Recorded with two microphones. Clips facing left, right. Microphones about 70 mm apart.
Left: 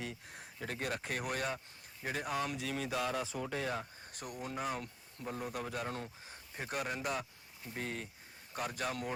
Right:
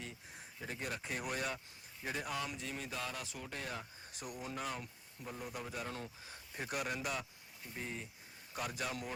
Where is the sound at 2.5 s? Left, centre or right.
Left.